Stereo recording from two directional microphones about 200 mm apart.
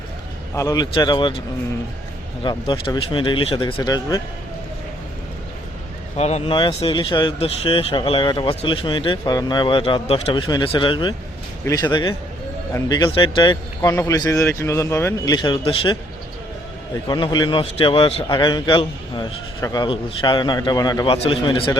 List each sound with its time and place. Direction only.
0.5 s a man's voice: 15° left (ahead or behind)
2.4 s a man's voice: 25° left (ahead or behind)
6.1 s a man's voice: 35° left (ahead or behind)
17.1 s a man's voice: 20° left (ahead or behind)